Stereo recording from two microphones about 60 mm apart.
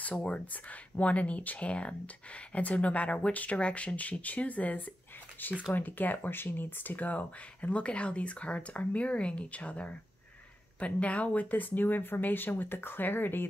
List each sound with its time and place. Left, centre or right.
0.0 s speech: left